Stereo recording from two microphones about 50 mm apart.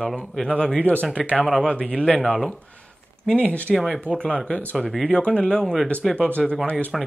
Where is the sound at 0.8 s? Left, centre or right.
Left.